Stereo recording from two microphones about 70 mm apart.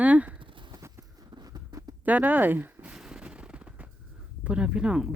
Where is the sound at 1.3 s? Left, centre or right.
Right.